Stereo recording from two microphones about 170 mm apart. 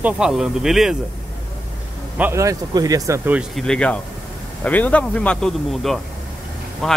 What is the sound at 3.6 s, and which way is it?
Speech, 5° left (ahead or behind).